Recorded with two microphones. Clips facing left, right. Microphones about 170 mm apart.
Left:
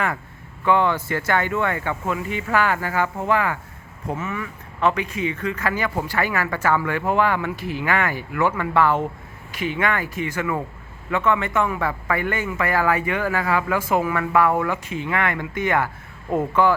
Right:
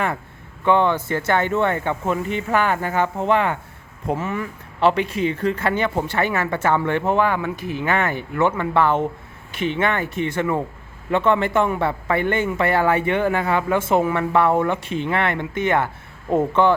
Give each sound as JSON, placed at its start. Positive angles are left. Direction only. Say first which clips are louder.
{"t": 0.6, "sound": "a man's voice", "louder": "right 2 dB", "side_deg": -20}